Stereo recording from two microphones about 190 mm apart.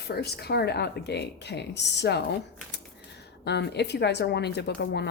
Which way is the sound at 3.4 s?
65° left (ahead or behind).